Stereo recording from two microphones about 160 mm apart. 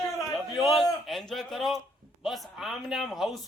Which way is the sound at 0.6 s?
Centre (ahead or behind).